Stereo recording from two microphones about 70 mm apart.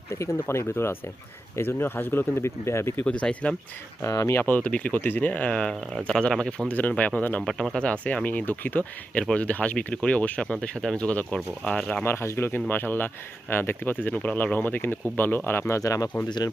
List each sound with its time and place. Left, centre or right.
0.2 s speech: left
3.0 s speech: centre
4.0 s speech: left
4.4 s speech: left
6.7 s speech: left
7.4 s speech: centre
12.0 s speech: left
12.5 s speech: left
15.8 s speech: left